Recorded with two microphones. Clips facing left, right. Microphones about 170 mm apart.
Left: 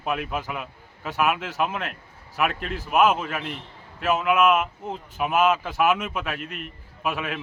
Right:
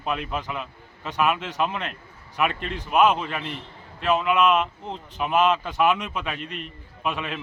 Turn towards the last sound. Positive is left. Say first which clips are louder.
# left 1 dB
turn(degrees=5)  # may be behind; listen again after turning